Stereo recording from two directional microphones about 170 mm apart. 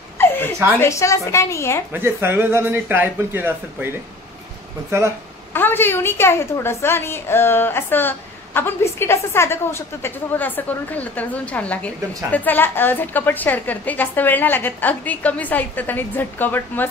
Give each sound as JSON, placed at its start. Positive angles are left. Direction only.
{"t": 0.7, "sound": "a woman's voice", "side_deg": 15}
{"t": 1.9, "sound": "speech", "side_deg": -15}
{"t": 4.9, "sound": "speech", "side_deg": -15}
{"t": 5.5, "sound": "a woman's voice", "side_deg": 10}